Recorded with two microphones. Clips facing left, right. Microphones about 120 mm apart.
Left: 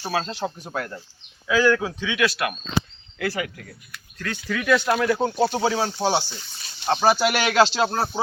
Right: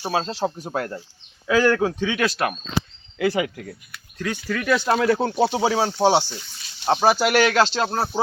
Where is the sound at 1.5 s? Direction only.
45° right (ahead or behind).